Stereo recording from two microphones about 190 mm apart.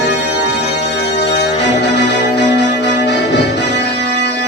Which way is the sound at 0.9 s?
65° left (ahead or behind).